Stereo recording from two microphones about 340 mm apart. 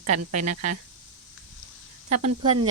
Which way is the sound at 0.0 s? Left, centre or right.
Right.